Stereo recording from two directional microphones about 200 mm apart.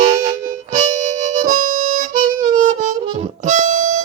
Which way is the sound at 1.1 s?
40° right (ahead or behind).